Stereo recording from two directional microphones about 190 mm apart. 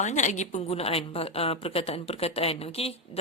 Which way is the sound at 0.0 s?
40° left (ahead or behind).